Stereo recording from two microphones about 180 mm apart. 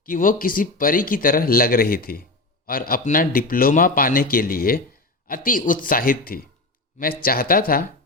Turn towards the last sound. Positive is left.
turn(degrees=55)  # may be behind; listen again after turning